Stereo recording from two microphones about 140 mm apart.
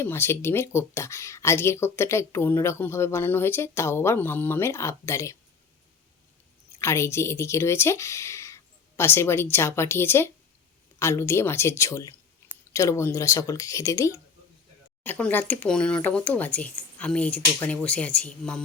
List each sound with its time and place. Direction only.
0.0 s speech: 20° left (ahead or behind)
6.7 s speech: 20° left (ahead or behind)